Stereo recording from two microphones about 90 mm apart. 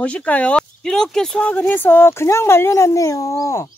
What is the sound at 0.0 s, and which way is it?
A woman's voice, 15° left (ahead or behind).